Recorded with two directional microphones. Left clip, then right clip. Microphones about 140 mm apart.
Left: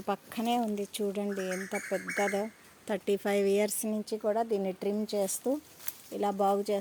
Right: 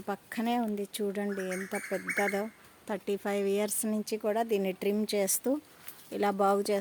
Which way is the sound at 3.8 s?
10° right (ahead or behind).